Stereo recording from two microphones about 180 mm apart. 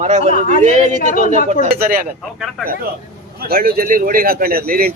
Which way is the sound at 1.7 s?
55° right (ahead or behind).